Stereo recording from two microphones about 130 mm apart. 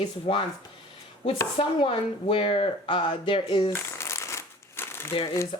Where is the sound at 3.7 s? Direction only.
20° left (ahead or behind).